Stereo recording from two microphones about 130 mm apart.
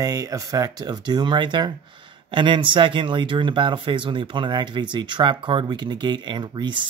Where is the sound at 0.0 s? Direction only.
25° right (ahead or behind).